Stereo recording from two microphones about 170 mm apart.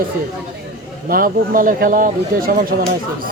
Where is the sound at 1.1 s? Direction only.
55° right (ahead or behind).